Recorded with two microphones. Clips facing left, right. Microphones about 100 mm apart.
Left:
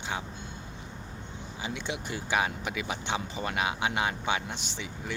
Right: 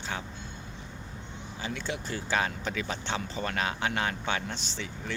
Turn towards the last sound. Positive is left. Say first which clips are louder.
# even
turn(degrees=15)  # may be behind; listen again after turning